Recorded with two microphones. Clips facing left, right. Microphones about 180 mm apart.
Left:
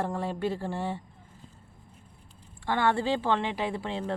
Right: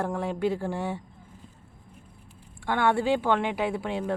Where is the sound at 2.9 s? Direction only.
10° right (ahead or behind).